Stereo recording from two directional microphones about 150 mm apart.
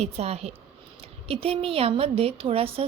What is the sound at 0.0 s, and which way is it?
A woman's voice, 45° right (ahead or behind).